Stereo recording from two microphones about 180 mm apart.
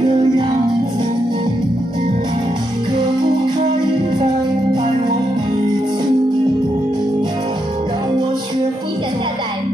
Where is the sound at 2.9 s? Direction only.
25° right (ahead or behind).